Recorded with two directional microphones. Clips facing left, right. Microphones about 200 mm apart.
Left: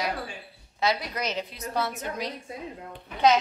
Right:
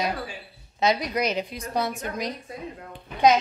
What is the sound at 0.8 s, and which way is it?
A woman's voice, 20° right (ahead or behind).